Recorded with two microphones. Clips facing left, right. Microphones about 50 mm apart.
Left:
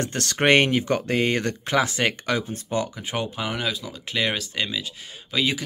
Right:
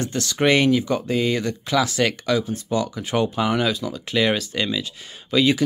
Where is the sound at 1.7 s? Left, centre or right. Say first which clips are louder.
Right 2 dB; left.